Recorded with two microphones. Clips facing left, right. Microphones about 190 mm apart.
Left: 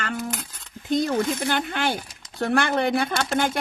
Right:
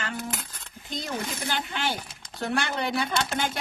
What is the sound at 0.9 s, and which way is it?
Speech, 55° left (ahead or behind).